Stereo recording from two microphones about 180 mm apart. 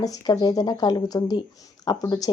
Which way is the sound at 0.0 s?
20° left (ahead or behind).